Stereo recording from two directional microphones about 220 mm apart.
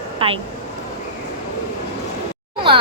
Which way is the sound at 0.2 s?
25° right (ahead or behind).